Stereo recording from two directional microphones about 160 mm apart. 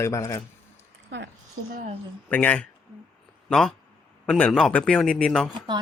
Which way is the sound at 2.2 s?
10° left (ahead or behind).